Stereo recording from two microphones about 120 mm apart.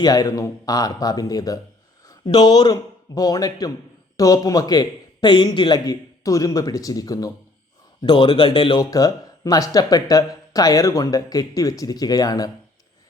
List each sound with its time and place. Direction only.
0.0 s speech: 30° left (ahead or behind)
8.0 s speech: 45° left (ahead or behind)
8.8 s speech: 30° left (ahead or behind)